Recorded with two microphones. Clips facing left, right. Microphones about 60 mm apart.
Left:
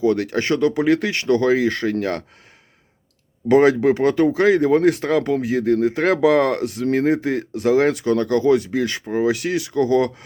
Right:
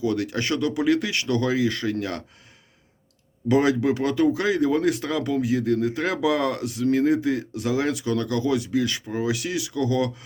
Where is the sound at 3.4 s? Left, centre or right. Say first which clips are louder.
Left 6 dB; left.